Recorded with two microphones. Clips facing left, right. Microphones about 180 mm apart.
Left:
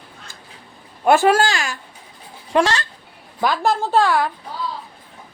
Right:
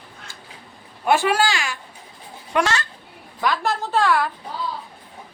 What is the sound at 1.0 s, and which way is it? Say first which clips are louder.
Speech: left 4 dB; 45° left (ahead or behind).